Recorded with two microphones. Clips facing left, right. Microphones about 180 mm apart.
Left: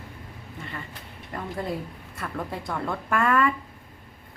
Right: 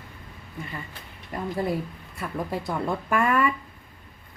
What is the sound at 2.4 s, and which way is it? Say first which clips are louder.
A woman's voice: right 3 dB; 20° right (ahead or behind).